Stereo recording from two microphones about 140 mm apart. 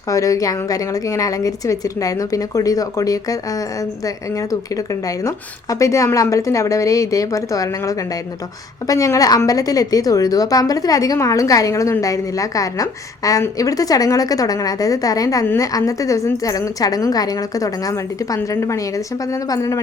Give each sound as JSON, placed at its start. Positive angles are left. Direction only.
{"t": 0.1, "sound": "a woman's voice", "side_deg": 25}